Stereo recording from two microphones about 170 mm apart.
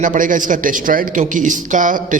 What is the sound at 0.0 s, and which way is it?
A man's voice, 50° right (ahead or behind).